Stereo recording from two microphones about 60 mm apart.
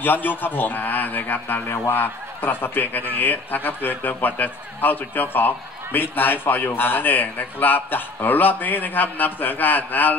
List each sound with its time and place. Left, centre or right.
0.0 s speech: left